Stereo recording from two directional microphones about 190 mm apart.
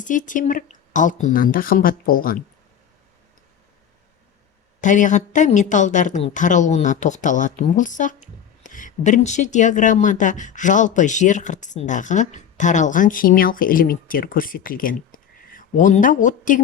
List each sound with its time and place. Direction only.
0.0 s speech: 40° left (ahead or behind)
4.8 s a woman's voice: 40° left (ahead or behind)